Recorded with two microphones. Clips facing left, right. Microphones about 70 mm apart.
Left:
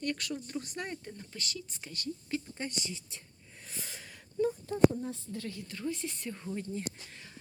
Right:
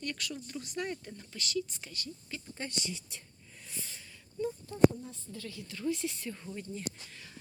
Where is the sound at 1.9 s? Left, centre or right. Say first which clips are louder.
Left 7 dB; left.